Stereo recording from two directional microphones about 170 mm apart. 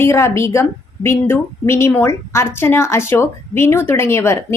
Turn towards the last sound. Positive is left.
turn(degrees=15)  # may be behind; listen again after turning